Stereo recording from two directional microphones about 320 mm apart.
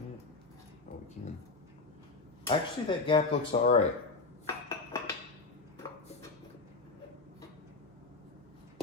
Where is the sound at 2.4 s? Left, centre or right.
Centre.